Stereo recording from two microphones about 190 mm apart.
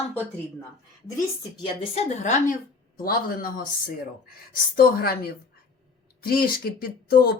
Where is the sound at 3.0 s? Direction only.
50° left (ahead or behind).